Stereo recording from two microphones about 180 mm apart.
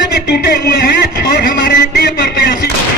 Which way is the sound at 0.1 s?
60° left (ahead or behind).